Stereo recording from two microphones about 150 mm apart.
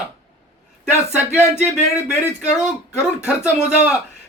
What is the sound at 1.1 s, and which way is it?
Speech, 10° right (ahead or behind).